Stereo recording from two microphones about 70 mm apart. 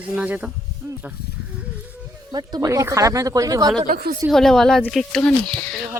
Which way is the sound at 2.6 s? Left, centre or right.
Right.